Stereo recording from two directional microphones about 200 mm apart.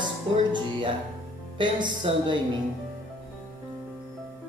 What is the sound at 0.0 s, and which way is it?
Speech, 25° right (ahead or behind).